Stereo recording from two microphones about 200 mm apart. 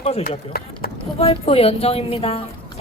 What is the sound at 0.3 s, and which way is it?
Speech, 45° left (ahead or behind).